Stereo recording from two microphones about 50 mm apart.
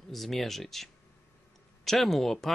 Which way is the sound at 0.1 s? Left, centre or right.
Centre.